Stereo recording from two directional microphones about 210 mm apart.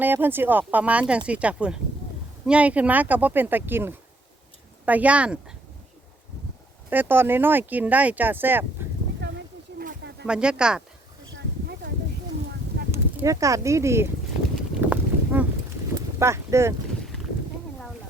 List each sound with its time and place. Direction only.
0.0 s speech: 10° right (ahead or behind)
6.9 s speech: 10° right (ahead or behind)
9.2 s a sound: 55° right (ahead or behind)
10.2 s speech: 5° right (ahead or behind)
12.9 s speech: 15° right (ahead or behind)
14.8 s a sound: 10° right (ahead or behind)
16.1 s speech: 15° right (ahead or behind)